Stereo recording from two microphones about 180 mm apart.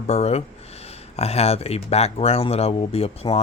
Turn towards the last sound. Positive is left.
turn(degrees=35)  # may be behind; listen again after turning